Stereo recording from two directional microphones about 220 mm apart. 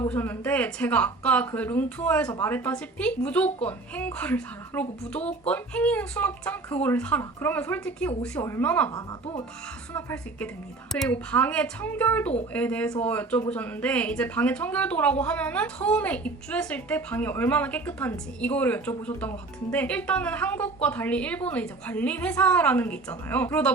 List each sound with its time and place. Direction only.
0.0 s a woman's voice: 10° left (ahead or behind)
9.0 s speech: 25° left (ahead or behind)
9.9 s a woman's voice: 10° left (ahead or behind)